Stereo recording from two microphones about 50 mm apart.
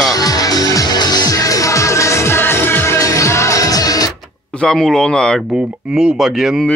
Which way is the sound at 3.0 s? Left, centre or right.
Left.